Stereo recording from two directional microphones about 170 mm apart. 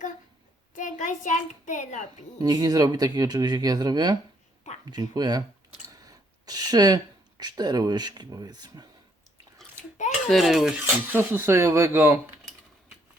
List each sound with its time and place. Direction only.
0.8 s a child's voice: 45° left (ahead or behind)
2.4 s speech: 20° right (ahead or behind)
10.2 s speech: centre (ahead or behind)
10.8 s speech: 15° right (ahead or behind)